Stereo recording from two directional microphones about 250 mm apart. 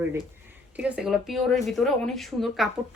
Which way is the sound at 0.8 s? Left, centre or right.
Centre.